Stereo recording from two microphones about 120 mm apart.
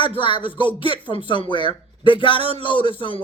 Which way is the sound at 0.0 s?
45° left (ahead or behind).